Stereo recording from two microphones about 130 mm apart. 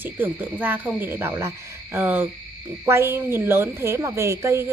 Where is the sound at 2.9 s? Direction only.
20° right (ahead or behind).